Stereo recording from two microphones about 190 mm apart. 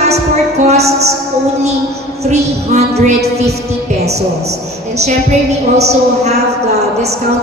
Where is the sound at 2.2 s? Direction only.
35° right (ahead or behind).